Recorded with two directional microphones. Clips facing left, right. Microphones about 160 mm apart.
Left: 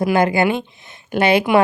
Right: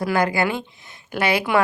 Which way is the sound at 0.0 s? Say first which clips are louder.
Left 5 dB; 20° left (ahead or behind).